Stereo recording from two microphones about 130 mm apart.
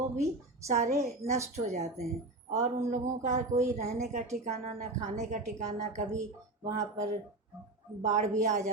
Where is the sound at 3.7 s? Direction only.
60° right (ahead or behind).